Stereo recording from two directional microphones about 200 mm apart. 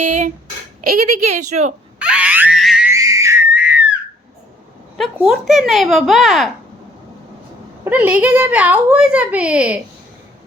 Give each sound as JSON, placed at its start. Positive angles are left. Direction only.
{"t": 0.0, "sound": "speech", "side_deg": -40}
{"t": 1.3, "sound": "speech", "side_deg": -35}
{"t": 2.0, "sound": "a sound", "side_deg": -5}
{"t": 2.9, "sound": "screaming", "side_deg": -15}
{"t": 4.9, "sound": "speech", "side_deg": -5}
{"t": 7.9, "sound": "speech", "side_deg": -10}